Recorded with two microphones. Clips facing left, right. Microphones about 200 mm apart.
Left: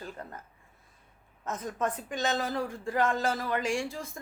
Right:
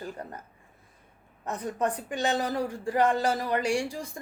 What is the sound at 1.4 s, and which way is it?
Speech, 15° right (ahead or behind).